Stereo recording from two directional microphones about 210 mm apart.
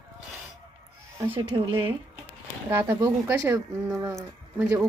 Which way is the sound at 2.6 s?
10° right (ahead or behind).